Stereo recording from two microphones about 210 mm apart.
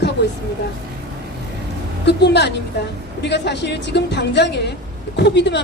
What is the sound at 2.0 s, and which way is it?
A woman's voice, 55° left (ahead or behind).